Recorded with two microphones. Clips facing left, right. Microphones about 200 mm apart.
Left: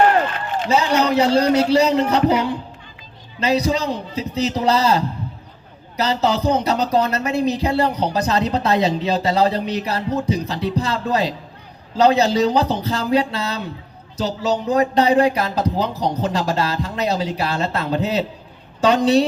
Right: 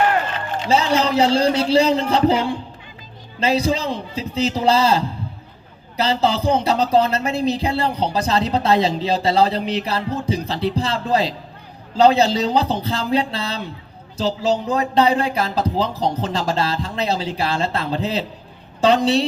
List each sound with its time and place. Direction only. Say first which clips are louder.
0.7 s a man's voice: even; 30° right (ahead or behind)